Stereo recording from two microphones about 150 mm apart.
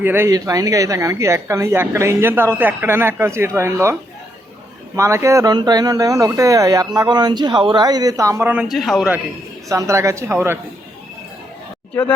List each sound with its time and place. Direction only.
0.0 s speech: 15° right (ahead or behind)
4.9 s speech: 20° right (ahead or behind)
8.6 s a man's voice: centre (ahead or behind)
9.6 s speech: 20° right (ahead or behind)